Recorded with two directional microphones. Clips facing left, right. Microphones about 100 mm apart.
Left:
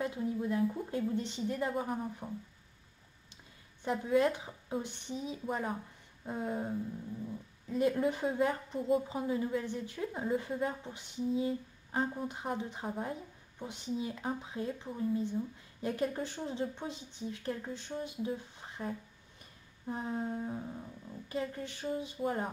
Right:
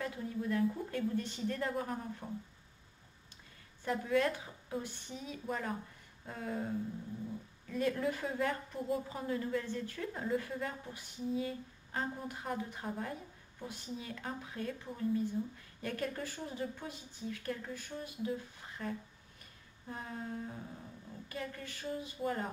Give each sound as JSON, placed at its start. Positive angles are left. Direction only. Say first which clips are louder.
{"t": 0.0, "sound": "a sound", "louder": "left 4 dB", "side_deg": 20}
{"t": 0.8, "sound": "a woman's voice", "louder": "left 2 dB", "side_deg": 20}
{"t": 3.8, "sound": "a woman's voice", "louder": "left 3 dB", "side_deg": 20}